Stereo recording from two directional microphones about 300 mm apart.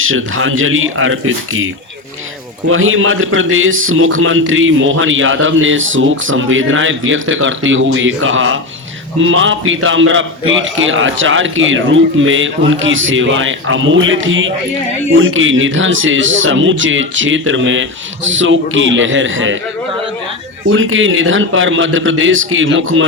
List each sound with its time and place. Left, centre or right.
0.0 s a man's voice: right
20.7 s a man's voice: right